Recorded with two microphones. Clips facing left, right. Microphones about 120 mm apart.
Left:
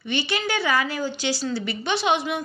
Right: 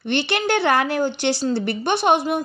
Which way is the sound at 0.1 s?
65° right (ahead or behind).